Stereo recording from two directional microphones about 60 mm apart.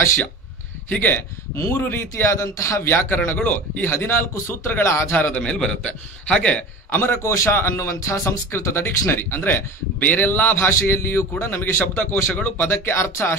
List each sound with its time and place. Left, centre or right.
0.8 s a man's voice: left
5.1 s speech: left
5.4 s a man's voice: centre
6.9 s a man's voice: left
7.2 s speech: left